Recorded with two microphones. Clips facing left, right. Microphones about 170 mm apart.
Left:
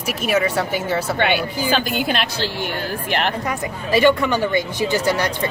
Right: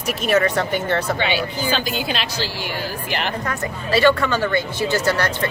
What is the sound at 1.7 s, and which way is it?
A woman's voice, 55° left (ahead or behind).